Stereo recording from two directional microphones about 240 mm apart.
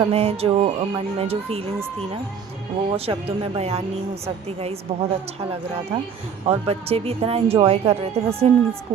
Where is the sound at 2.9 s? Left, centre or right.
Right.